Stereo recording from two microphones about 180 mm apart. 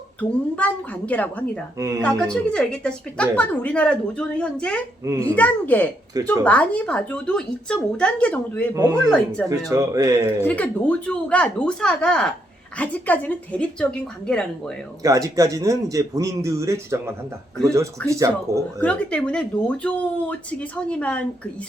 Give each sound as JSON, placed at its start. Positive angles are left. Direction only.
{"t": 0.2, "sound": "a woman's voice", "side_deg": 10}
{"t": 8.7, "sound": "a man's voice", "side_deg": -20}
{"t": 9.0, "sound": "a woman's voice", "side_deg": 5}
{"t": 9.6, "sound": "speech", "side_deg": -20}
{"t": 10.4, "sound": "a woman's voice", "side_deg": 10}
{"t": 15.0, "sound": "a man's voice", "side_deg": -20}
{"t": 18.8, "sound": "a woman's voice", "side_deg": 5}